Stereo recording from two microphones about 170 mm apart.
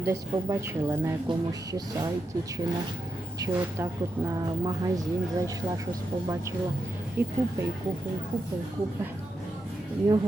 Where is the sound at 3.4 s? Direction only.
15° right (ahead or behind).